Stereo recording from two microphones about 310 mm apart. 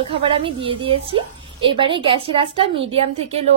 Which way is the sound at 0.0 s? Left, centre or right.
Centre.